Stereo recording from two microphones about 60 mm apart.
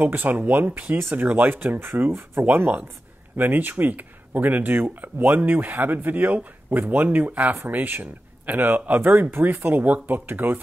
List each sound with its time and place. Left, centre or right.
0.0 s speech: right